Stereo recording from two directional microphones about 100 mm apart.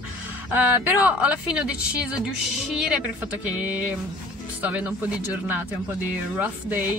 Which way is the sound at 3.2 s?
15° right (ahead or behind).